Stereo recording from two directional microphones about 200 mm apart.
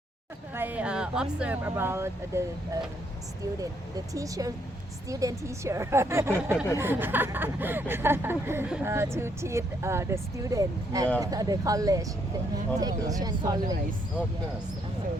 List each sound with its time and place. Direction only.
0.5 s speech: 10° right (ahead or behind)
3.6 s speech: 15° right (ahead or behind)